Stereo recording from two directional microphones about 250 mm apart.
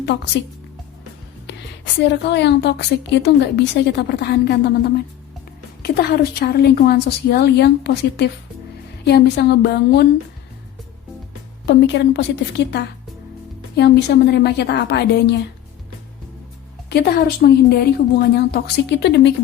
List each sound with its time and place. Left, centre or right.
1.5 s a woman's voice: left
11.6 s a woman's voice: left
16.9 s a woman's voice: left